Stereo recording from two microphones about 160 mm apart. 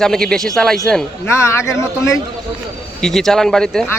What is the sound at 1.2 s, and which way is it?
Speech, 15° left (ahead or behind).